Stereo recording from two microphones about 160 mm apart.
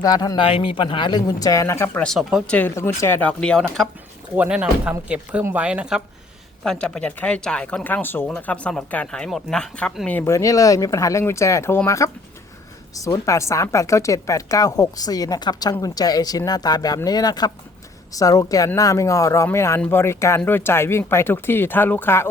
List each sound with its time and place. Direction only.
0.0 s speech: 25° left (ahead or behind)
0.4 s speech: 35° left (ahead or behind); by 2.0 s 15° left (ahead or behind)
2.0 s speech: centre (ahead or behind)
4.4 s speech: 5° right (ahead or behind)
10.2 s speech: 20° left (ahead or behind)